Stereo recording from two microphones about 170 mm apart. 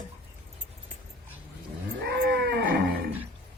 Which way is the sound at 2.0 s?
75° right (ahead or behind).